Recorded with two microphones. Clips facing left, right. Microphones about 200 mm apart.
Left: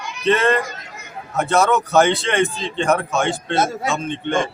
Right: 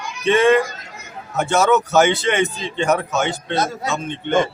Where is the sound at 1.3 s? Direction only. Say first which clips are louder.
Right 1 dB; 5° right (ahead or behind).